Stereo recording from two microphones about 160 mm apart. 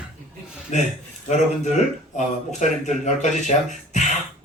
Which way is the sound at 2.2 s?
50° left (ahead or behind).